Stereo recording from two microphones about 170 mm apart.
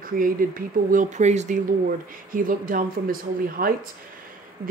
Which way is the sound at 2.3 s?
55° right (ahead or behind).